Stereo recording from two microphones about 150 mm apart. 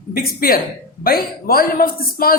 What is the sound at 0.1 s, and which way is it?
A man's voice, 75° left (ahead or behind).